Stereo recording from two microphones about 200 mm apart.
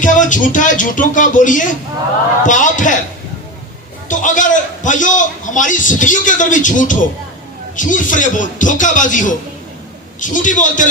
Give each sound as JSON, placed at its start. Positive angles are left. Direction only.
{"t": 0.0, "sound": "a man's voice", "side_deg": 40}
{"t": 4.1, "sound": "a man's voice", "side_deg": 40}